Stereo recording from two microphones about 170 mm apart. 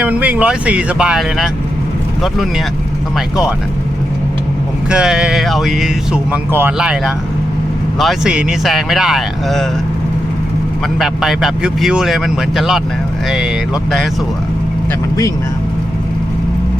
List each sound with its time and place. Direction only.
0.0 s speech: 10° right (ahead or behind)
3.2 s speech: 5° right (ahead or behind)
4.9 s speech: 5° right (ahead or behind)
11.0 s speech: centre (ahead or behind)